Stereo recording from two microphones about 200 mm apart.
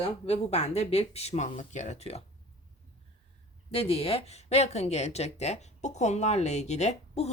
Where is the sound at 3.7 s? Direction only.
30° left (ahead or behind).